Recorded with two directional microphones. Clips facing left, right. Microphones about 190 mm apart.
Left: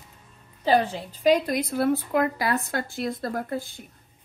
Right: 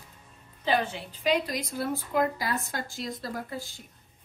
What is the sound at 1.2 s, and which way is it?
Speech, 50° left (ahead or behind).